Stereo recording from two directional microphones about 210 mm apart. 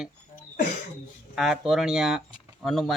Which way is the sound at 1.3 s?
Centre (ahead or behind).